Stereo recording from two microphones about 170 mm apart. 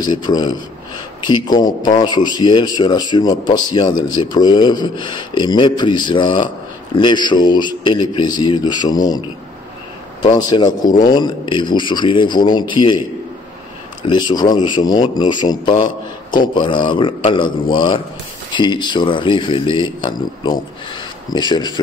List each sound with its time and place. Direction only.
0.0 s speech: 25° left (ahead or behind)
10.4 s speech: 25° left (ahead or behind)
14.0 s speech: 25° left (ahead or behind)